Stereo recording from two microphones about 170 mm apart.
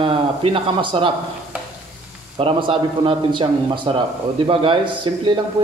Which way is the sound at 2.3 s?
30° right (ahead or behind).